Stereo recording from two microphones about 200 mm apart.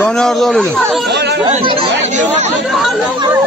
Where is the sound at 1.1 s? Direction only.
60° right (ahead or behind).